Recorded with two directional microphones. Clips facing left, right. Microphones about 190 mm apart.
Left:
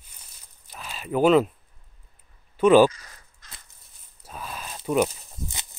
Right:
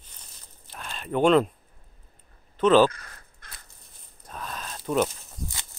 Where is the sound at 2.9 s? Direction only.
55° right (ahead or behind).